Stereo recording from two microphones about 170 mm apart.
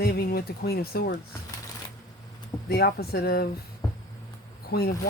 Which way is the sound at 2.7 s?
70° left (ahead or behind).